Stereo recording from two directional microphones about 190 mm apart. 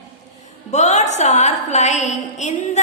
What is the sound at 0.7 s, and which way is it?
A woman's voice, 40° left (ahead or behind).